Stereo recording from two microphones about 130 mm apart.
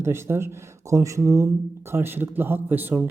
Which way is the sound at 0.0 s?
20° right (ahead or behind).